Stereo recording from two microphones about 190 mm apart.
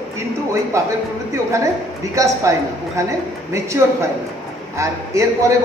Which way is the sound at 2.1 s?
15° right (ahead or behind).